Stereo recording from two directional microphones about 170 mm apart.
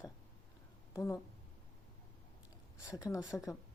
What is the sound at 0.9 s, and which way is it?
Speech, 15° left (ahead or behind).